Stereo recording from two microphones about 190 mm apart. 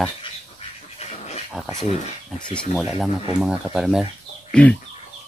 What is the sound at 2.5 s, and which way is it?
Speech, 5° left (ahead or behind).